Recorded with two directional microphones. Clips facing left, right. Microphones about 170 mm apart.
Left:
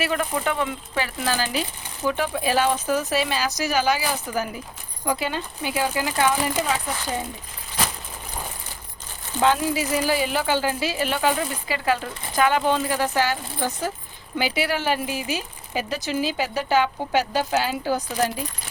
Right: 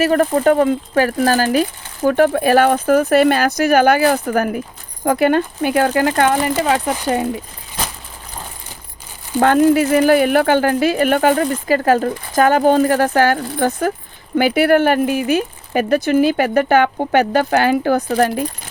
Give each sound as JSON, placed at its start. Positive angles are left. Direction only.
{"t": 0.0, "sound": "speech", "side_deg": -45}
{"t": 9.4, "sound": "speech", "side_deg": -55}